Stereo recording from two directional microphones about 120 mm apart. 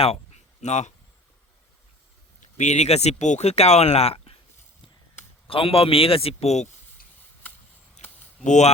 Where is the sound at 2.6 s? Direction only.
70° left (ahead or behind); by 4.4 s 55° left (ahead or behind).